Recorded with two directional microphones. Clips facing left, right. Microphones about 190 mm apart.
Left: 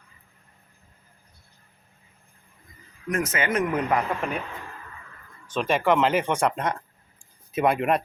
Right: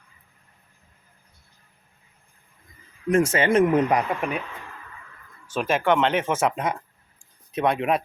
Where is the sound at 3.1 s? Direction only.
30° right (ahead or behind).